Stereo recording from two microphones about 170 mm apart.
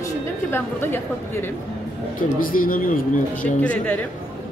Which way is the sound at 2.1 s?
55° left (ahead or behind).